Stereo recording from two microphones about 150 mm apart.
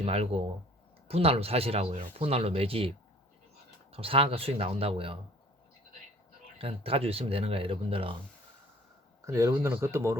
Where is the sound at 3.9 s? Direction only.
40° right (ahead or behind).